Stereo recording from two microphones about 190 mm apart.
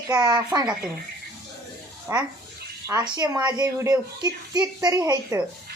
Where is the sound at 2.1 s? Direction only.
15° right (ahead or behind).